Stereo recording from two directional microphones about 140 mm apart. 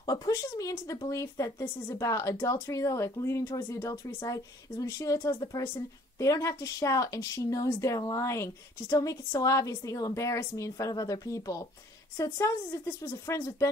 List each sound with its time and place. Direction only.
0.0 s speech: 30° left (ahead or behind)